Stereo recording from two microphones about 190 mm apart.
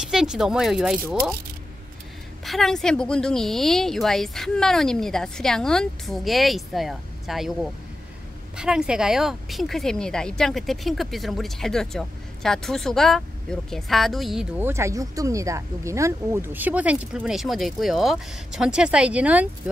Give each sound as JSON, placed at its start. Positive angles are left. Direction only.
{"t": 0.0, "sound": "speech", "side_deg": 0}
{"t": 2.4, "sound": "speech", "side_deg": 0}
{"t": 8.5, "sound": "speech", "side_deg": -5}